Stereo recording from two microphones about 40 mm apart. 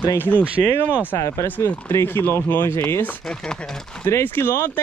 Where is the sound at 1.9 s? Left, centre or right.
Left.